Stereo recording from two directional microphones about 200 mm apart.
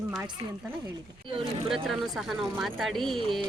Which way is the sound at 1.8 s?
Centre (ahead or behind).